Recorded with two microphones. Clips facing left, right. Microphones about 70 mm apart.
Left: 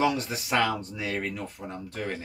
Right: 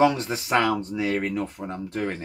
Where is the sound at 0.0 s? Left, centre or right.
Right.